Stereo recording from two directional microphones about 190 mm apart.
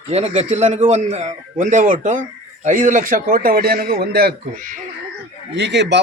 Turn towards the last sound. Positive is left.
turn(degrees=-65)  # may be behind; listen again after turning